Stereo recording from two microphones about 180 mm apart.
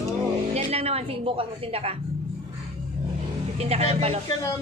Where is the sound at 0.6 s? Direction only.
35° right (ahead or behind).